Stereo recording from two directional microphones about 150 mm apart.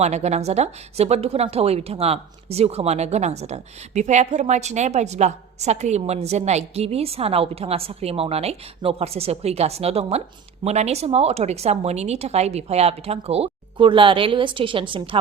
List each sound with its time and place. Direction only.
0.0 s speech: 50° right (ahead or behind)